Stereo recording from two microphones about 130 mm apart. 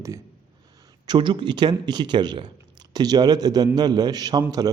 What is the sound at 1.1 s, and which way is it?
A man's voice, 35° right (ahead or behind).